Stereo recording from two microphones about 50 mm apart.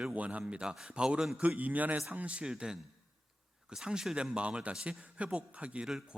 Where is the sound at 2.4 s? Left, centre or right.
Centre.